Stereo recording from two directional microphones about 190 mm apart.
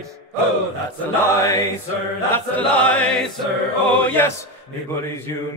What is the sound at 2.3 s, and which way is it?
Chant, 5° left (ahead or behind).